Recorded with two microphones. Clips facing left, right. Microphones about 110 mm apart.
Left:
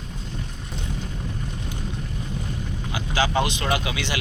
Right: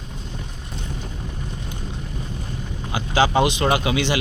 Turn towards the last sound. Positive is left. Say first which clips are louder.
# right 5 dB
turn(degrees=-25)  # may be behind; listen again after turning